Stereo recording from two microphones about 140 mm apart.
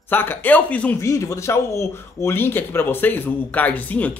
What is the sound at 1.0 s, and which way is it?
A man's voice, 20° left (ahead or behind).